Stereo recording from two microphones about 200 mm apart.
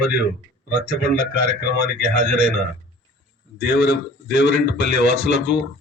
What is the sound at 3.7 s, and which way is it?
Speech, 55° left (ahead or behind).